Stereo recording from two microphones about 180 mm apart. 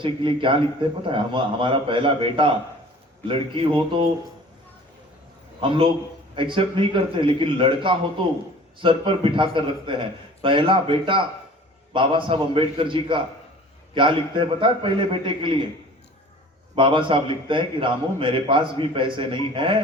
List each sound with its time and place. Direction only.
0.0 s a man's voice: 30° right (ahead or behind)
5.5 s a man's voice: 30° right (ahead or behind)
16.7 s a man's voice: 30° right (ahead or behind)